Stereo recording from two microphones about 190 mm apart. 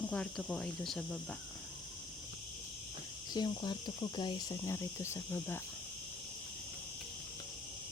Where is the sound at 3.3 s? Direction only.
20° left (ahead or behind).